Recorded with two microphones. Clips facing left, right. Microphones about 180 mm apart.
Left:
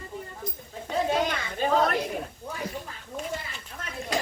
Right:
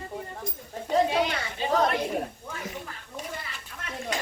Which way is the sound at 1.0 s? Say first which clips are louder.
Even; 45° left (ahead or behind).